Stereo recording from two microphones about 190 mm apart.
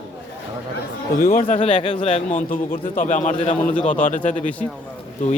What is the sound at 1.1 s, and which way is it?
A man's voice, 45° left (ahead or behind).